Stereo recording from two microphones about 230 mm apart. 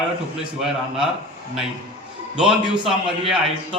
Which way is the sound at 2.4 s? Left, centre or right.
Centre.